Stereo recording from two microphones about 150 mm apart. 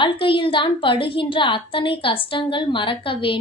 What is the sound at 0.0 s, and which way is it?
A woman's voice, 35° left (ahead or behind).